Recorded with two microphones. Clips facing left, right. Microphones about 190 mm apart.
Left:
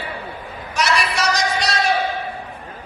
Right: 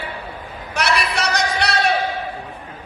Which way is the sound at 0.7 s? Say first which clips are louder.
Even; 60° right (ahead or behind).